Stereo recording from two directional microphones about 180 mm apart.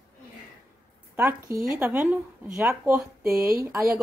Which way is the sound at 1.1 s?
10° right (ahead or behind).